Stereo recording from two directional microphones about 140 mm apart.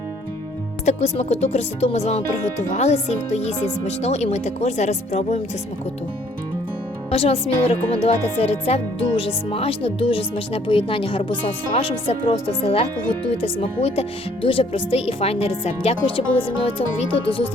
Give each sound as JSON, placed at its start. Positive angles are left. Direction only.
{"t": 0.9, "sound": "speech", "side_deg": 50}
{"t": 7.1, "sound": "speech", "side_deg": 45}